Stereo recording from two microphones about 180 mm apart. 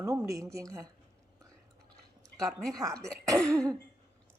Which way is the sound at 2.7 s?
20° right (ahead or behind).